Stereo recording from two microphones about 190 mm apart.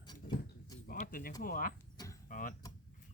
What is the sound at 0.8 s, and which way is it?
Music, 45° left (ahead or behind).